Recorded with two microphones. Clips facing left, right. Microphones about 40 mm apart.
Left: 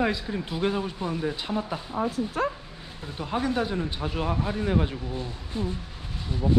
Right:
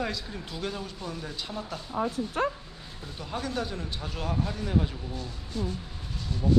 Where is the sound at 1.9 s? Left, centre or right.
Centre; by 5.7 s left.